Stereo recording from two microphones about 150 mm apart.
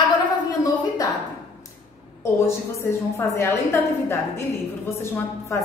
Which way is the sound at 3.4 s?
15° left (ahead or behind).